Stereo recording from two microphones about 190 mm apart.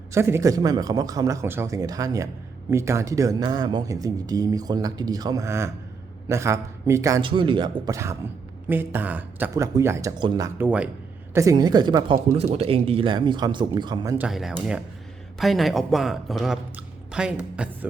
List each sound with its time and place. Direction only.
0.1 s a man's voice: 15° right (ahead or behind)
14.2 s a woman's voice: centre (ahead or behind)